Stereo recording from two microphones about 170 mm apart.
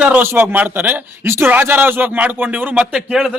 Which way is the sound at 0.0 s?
10° right (ahead or behind).